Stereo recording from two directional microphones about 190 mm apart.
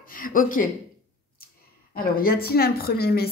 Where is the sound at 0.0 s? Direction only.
50° left (ahead or behind).